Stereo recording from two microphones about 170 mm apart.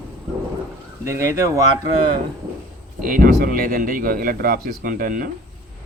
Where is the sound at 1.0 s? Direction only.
15° right (ahead or behind).